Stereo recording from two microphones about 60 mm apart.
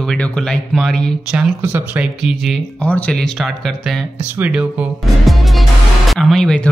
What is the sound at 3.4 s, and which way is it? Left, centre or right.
Speech, centre.